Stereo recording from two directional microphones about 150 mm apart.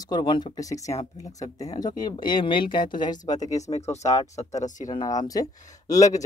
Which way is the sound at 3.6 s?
50° left (ahead or behind).